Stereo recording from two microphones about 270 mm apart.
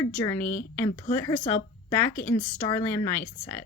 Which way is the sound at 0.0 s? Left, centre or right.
Centre.